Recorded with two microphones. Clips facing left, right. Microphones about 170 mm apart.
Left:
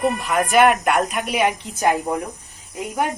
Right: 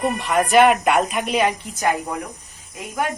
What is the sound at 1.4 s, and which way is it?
Speech, 20° left (ahead or behind).